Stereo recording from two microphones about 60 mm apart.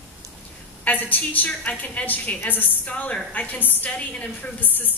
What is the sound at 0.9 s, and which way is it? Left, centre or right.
A woman's voice, left.